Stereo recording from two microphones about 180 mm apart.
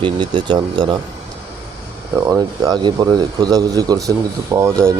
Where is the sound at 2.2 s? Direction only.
20° right (ahead or behind).